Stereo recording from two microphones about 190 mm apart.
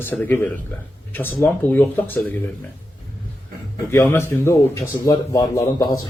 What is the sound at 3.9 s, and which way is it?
Speech, 10° left (ahead or behind).